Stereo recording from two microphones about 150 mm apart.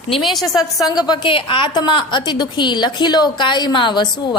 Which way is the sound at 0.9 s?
25° left (ahead or behind).